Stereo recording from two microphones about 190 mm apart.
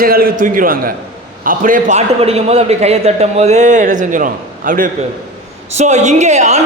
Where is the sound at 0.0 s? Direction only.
50° right (ahead or behind).